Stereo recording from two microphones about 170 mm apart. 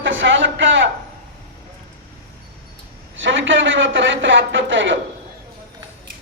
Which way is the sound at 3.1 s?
90° right.